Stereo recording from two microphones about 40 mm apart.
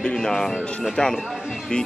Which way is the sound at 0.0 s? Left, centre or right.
Centre.